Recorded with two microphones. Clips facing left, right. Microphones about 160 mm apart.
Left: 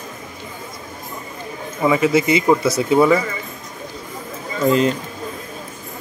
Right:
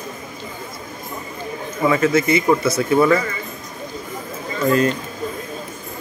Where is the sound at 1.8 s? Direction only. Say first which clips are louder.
Left 1 dB; 15° left (ahead or behind).